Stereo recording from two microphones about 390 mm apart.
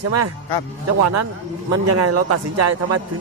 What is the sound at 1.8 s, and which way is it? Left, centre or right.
Speech, right.